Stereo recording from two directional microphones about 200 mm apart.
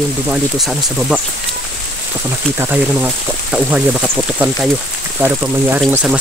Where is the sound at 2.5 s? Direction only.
10° right (ahead or behind).